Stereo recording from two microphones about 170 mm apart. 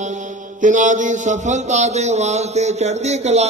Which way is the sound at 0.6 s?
45° right (ahead or behind).